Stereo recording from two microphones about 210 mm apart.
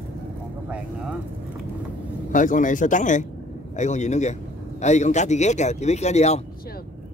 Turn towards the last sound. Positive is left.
turn(degrees=30)  # may be behind; listen again after turning